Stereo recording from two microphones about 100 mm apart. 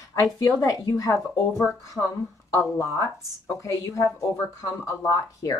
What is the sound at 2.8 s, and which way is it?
A woman's voice, 30° left (ahead or behind).